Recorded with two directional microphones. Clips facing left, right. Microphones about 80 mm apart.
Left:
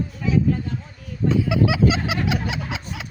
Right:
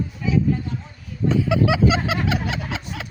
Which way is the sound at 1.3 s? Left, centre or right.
Centre.